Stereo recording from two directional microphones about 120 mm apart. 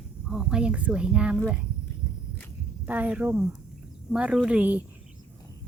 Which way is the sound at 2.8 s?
15° right (ahead or behind).